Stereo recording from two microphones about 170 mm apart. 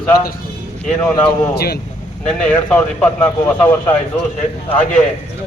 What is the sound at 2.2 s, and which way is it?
Speech, 5° left (ahead or behind).